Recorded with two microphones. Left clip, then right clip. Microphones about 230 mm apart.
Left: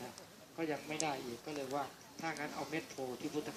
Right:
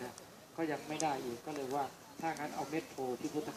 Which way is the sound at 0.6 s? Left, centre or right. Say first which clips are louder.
Right 2 dB; left.